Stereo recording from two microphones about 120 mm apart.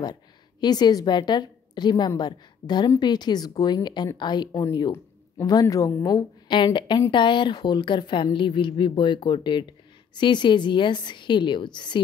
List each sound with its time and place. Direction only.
0.0 s a woman's voice: 35° left (ahead or behind)
6.5 s a woman's voice: 40° left (ahead or behind)